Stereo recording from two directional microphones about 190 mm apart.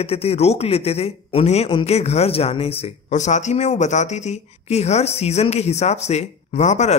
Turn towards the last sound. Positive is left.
turn(degrees=40)  # may be behind; listen again after turning